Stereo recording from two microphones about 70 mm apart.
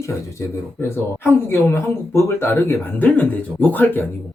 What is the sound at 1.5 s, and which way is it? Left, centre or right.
Speech, left.